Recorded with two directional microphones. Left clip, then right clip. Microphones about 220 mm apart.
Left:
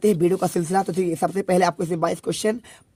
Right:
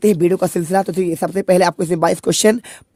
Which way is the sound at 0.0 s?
30° right (ahead or behind).